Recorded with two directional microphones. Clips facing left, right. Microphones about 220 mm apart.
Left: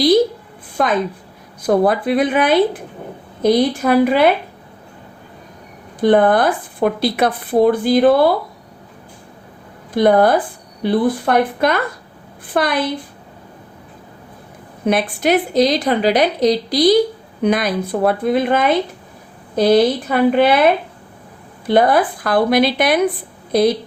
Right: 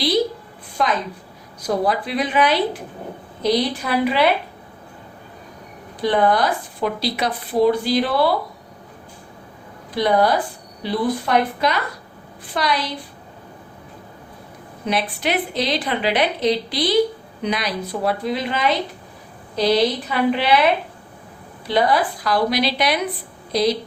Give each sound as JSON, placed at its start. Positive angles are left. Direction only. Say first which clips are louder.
{"t": 0.8, "sound": "speech", "louder": "left 5 dB", "side_deg": 50}
{"t": 6.0, "sound": "speech", "louder": "left 5 dB", "side_deg": 50}
{"t": 9.9, "sound": "speech", "louder": "left 5 dB", "side_deg": 50}
{"t": 14.8, "sound": "speech", "louder": "left 7 dB", "side_deg": 50}
{"t": 17.4, "sound": "speech", "louder": "left 7 dB", "side_deg": 50}
{"t": 21.7, "sound": "speech", "louder": "left 5 dB", "side_deg": 50}